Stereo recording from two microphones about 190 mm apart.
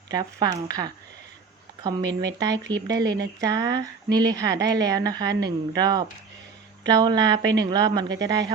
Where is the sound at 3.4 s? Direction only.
20° right (ahead or behind).